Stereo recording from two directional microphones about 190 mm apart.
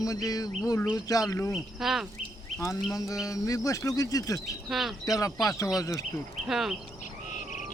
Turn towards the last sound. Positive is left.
turn(degrees=0)  # may be behind; listen again after turning